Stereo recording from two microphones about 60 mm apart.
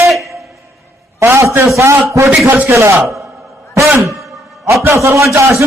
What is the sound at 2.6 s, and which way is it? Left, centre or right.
Speech, right.